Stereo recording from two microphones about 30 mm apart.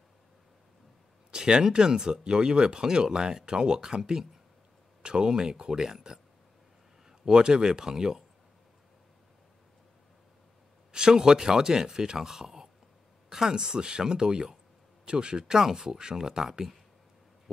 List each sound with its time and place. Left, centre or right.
1.3 s speech: right
10.9 s speech: right